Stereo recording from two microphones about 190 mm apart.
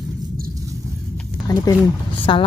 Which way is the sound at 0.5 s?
15° right (ahead or behind).